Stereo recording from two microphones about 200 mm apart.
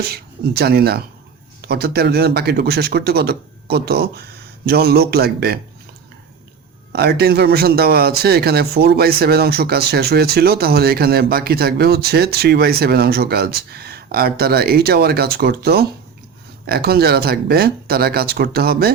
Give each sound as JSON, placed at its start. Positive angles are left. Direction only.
{"t": 0.0, "sound": "speech", "side_deg": -50}
{"t": 6.9, "sound": "speech", "side_deg": -50}